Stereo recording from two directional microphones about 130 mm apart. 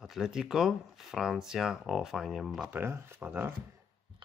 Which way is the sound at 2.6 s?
15° right (ahead or behind).